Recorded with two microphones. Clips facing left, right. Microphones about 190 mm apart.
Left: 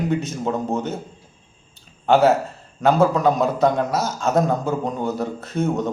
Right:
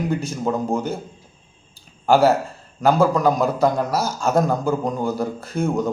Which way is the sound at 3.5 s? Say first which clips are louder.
Even; 25° left (ahead or behind).